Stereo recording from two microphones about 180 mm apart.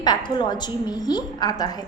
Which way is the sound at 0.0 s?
25° left (ahead or behind).